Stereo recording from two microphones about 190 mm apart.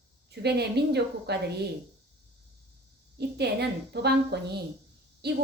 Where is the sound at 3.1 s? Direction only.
60° right (ahead or behind).